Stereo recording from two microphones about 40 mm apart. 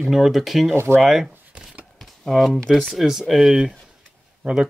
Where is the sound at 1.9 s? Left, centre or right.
Centre.